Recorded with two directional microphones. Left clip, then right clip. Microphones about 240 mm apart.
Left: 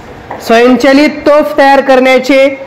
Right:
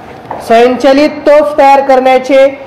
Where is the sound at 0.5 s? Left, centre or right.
Left.